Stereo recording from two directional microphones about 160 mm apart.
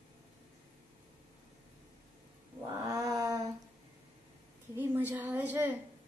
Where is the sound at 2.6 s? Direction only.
20° right (ahead or behind).